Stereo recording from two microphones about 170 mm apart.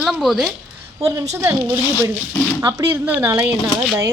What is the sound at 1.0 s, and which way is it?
A woman's voice, 20° right (ahead or behind).